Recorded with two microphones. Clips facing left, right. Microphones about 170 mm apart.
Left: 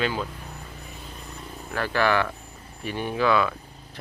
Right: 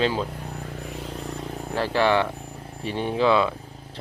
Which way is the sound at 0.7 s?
80° right.